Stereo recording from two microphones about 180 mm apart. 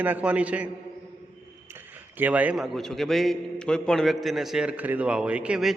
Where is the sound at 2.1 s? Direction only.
10° right (ahead or behind).